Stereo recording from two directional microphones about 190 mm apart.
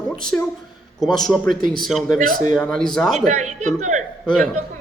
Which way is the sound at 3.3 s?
40° right (ahead or behind).